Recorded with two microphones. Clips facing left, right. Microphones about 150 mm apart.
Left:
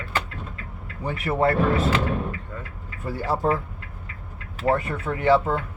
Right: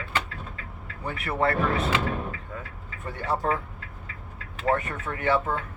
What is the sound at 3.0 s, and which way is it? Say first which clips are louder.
Speech: left 4 dB; 30° left (ahead or behind).